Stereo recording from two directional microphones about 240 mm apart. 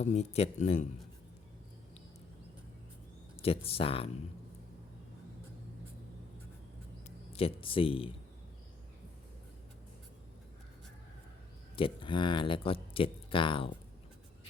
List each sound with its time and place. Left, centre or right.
0.0 s speech: left
3.3 s speech: left
7.3 s speech: left
11.8 s speech: left